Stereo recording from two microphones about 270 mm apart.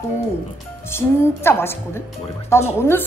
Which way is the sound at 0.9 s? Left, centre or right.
Centre.